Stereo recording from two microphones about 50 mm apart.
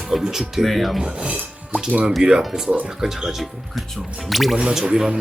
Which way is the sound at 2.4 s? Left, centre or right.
Centre.